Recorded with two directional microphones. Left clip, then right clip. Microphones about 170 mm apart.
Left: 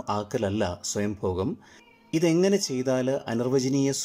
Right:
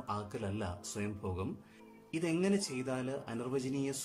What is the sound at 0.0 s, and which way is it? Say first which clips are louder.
Speech: left 12 dB; 45° left (ahead or behind).